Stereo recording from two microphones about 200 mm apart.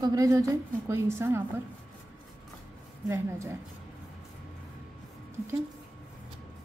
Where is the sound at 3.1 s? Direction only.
15° right (ahead or behind).